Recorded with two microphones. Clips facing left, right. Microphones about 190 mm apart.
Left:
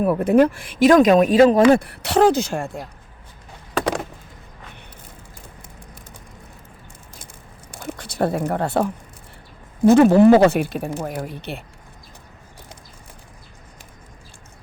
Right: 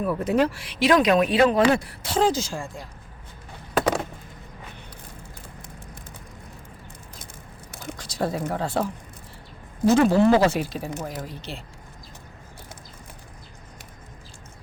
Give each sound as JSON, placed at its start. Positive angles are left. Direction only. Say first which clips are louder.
{"t": 0.0, "sound": "speech", "louder": "left 7 dB", "side_deg": 60}
{"t": 3.8, "sound": "a sound", "louder": "even", "side_deg": -5}
{"t": 7.9, "sound": "speech", "louder": "left 5 dB", "side_deg": 60}